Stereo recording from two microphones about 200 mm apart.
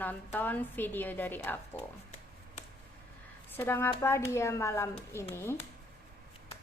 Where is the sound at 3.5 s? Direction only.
10° left (ahead or behind).